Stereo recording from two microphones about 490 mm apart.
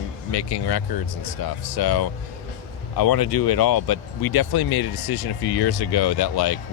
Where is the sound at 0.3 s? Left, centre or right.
Left.